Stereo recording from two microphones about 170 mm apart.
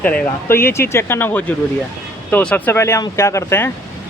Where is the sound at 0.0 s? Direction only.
10° left (ahead or behind).